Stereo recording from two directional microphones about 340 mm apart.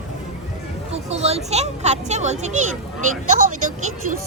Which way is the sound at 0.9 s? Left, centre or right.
Centre.